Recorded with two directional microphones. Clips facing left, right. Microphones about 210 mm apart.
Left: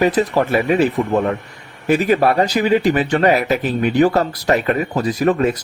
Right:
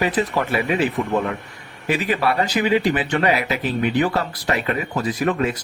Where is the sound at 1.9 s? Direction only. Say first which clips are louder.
Left 6 dB; 45° left (ahead or behind).